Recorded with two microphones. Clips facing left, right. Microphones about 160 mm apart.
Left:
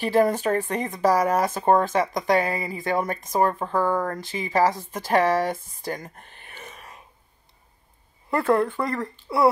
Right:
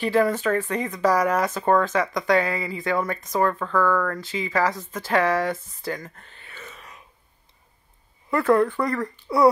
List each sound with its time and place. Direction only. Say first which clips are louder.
0.0 s speech: left 1 dB; 40° left (ahead or behind)
2.4 s speech: even; 15° left (ahead or behind)
2.7 s speech: even; 40° left (ahead or behind)
8.3 s speech: right 2 dB; 25° left (ahead or behind)